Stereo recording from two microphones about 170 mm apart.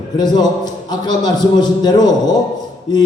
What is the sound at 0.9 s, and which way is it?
Speech, 25° left (ahead or behind).